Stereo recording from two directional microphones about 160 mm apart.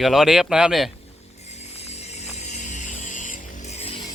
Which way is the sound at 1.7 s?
40° left (ahead or behind).